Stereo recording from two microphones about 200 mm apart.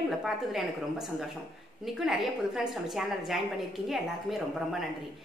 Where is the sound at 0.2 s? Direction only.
Centre (ahead or behind).